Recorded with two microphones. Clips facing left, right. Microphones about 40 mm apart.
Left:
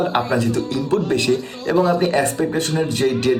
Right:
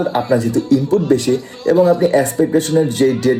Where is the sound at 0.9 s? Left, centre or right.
Left.